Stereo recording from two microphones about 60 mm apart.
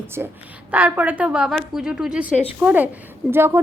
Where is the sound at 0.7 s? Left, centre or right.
Right; by 2.1 s centre.